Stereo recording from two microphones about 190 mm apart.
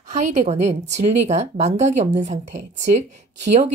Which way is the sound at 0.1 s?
35° right (ahead or behind).